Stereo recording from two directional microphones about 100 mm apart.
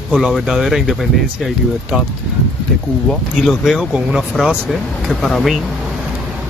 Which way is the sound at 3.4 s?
5° right (ahead or behind).